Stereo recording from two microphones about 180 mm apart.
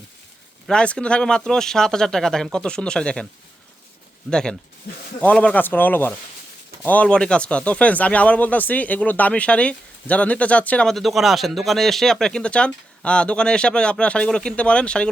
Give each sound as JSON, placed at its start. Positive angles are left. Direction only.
{"t": 0.7, "sound": "speech", "side_deg": 5}
{"t": 4.3, "sound": "speech", "side_deg": 5}
{"t": 4.9, "sound": "speech", "side_deg": 60}
{"t": 5.2, "sound": "speech", "side_deg": 5}